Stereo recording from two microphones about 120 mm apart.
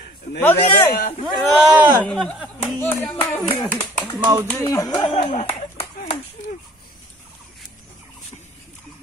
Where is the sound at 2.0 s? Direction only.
10° left (ahead or behind).